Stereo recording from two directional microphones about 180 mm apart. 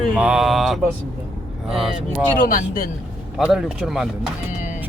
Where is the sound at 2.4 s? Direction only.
50° left (ahead or behind).